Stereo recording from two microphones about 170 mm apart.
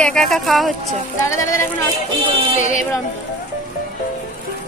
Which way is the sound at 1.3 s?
20° left (ahead or behind).